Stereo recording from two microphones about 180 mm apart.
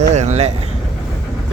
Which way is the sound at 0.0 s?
40° right (ahead or behind).